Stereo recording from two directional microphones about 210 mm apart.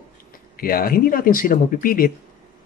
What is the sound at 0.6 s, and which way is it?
A man's voice, 45° left (ahead or behind).